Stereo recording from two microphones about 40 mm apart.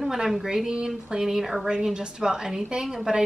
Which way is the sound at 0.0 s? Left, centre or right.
Centre.